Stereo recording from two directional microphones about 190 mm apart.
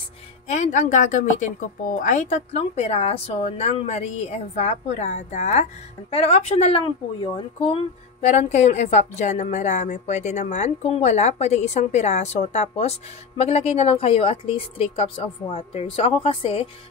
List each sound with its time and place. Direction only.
0.5 s a woman's voice: 40° left (ahead or behind)